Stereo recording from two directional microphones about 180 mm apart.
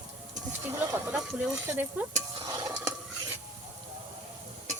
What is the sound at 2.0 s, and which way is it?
Speech, 10° right (ahead or behind).